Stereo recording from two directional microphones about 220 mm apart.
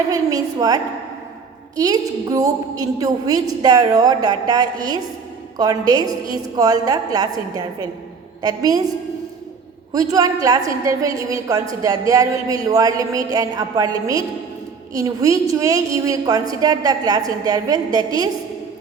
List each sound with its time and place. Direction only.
0.1 s a woman's voice: 15° right (ahead or behind)
9.9 s a woman's voice: 15° right (ahead or behind)